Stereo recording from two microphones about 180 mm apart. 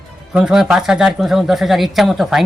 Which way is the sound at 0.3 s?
5° right (ahead or behind).